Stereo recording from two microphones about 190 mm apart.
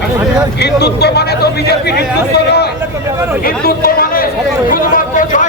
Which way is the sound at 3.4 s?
50° left (ahead or behind).